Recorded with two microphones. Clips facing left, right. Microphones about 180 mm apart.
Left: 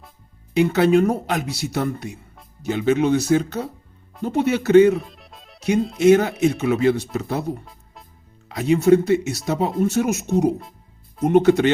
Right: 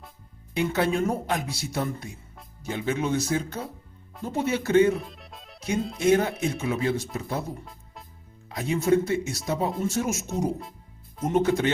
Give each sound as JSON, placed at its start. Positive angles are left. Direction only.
{"t": 0.5, "sound": "speech", "side_deg": 80}
{"t": 2.6, "sound": "speech", "side_deg": 80}
{"t": 4.9, "sound": "music", "side_deg": 0}
{"t": 5.5, "sound": "speech", "side_deg": 70}
{"t": 6.0, "sound": "speech", "side_deg": 80}